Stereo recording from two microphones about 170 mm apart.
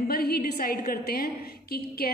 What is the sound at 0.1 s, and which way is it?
A woman's voice, 65° left (ahead or behind).